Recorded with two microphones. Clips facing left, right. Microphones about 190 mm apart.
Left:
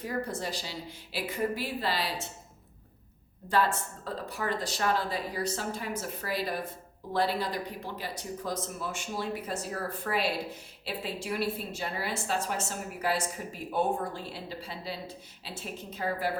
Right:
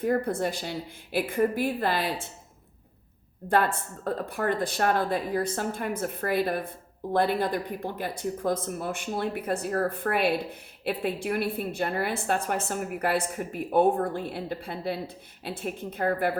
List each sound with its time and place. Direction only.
0.0 s a woman's voice: 55° right (ahead or behind)
3.5 s speech: 55° right (ahead or behind)